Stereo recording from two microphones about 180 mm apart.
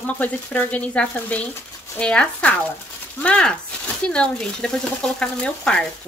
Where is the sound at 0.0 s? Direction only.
10° left (ahead or behind).